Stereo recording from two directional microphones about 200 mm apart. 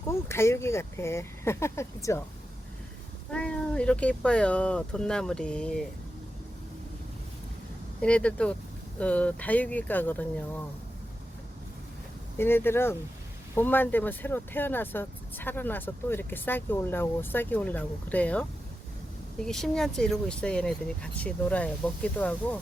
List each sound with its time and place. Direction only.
0.1 s speech: 15° left (ahead or behind)
3.3 s speech: 5° left (ahead or behind)
8.0 s speech: 5° left (ahead or behind)
12.4 s speech: 10° left (ahead or behind)